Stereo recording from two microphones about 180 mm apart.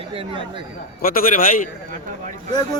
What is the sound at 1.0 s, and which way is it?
Speech, 50° left (ahead or behind).